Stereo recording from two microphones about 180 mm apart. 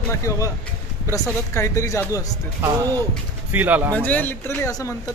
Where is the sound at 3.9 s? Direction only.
10° left (ahead or behind).